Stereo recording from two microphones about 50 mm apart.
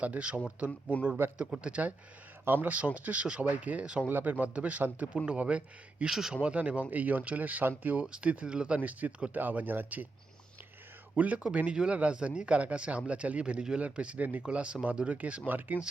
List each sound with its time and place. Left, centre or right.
0.0 s speech: right
2.4 s speech: right
4.1 s speech: right
6.1 s speech: centre
6.4 s speech: right
8.8 s speech: right
11.1 s speech: right
15.4 s speech: right